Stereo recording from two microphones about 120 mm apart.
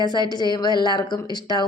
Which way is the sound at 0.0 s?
35° left (ahead or behind).